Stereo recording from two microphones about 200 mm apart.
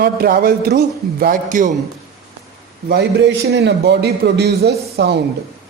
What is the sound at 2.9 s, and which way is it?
A man's voice, 55° right (ahead or behind).